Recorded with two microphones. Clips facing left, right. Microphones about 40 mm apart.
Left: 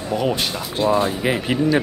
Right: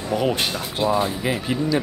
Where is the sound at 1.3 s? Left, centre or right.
Left.